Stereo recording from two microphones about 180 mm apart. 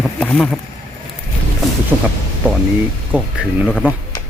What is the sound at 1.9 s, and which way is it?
Speech, 5° right (ahead or behind).